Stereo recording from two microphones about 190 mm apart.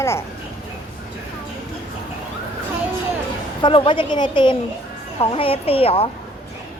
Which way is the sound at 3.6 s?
25° left (ahead or behind).